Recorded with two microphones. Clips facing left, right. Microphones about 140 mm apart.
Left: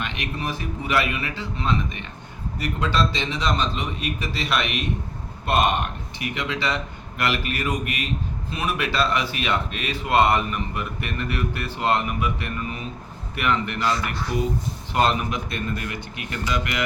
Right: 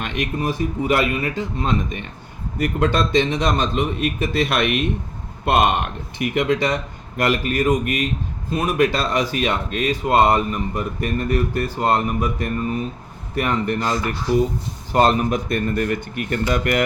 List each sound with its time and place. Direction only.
0.0 s speech: 50° right (ahead or behind)